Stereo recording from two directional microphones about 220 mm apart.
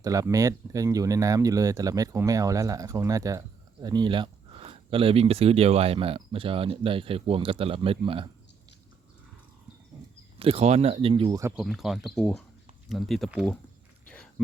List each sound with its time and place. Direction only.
0.0 s speech: 15° right (ahead or behind)
10.3 s speech: 25° right (ahead or behind)
11.5 s speech: centre (ahead or behind)
14.1 s a sound: 5° left (ahead or behind)